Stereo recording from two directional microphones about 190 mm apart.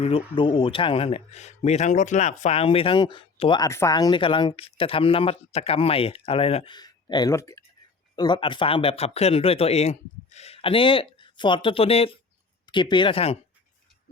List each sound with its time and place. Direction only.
0.0 s speech: 30° left (ahead or behind)